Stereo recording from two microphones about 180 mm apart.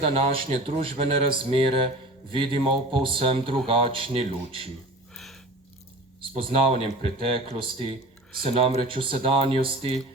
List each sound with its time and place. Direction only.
0.0 s a man's voice: 30° right (ahead or behind)
5.1 s a sound: centre (ahead or behind)
6.3 s a man's voice: 30° right (ahead or behind)